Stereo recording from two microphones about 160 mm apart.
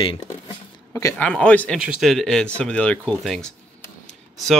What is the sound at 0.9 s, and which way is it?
Speech, 15° left (ahead or behind).